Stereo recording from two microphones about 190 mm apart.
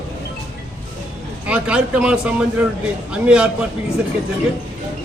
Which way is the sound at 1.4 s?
5° right (ahead or behind).